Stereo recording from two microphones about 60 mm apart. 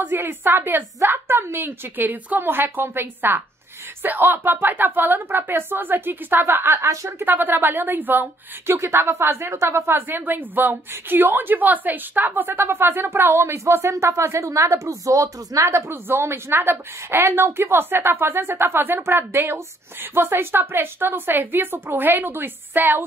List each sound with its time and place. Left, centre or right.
0.0 s a woman's voice: right
7.2 s a woman's voice: right
8.7 s a woman's voice: right
12.4 s speech: right
15.9 s a woman's voice: right